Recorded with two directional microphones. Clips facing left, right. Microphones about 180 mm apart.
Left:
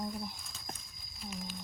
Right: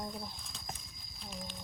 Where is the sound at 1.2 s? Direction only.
Centre (ahead or behind).